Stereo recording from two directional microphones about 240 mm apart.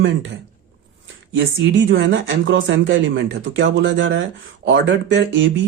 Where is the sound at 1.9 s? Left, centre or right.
Right.